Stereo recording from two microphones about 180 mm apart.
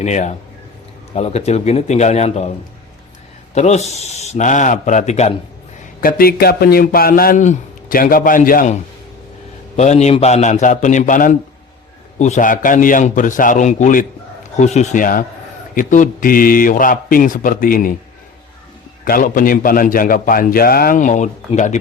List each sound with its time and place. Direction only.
0.0 s a man's voice: 40° left (ahead or behind)
3.5 s a man's voice: 40° left (ahead or behind)
6.0 s a man's voice: 50° left (ahead or behind)
19.0 s a man's voice: 50° left (ahead or behind)